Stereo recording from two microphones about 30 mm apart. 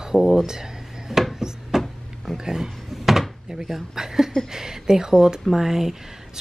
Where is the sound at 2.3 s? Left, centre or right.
Right.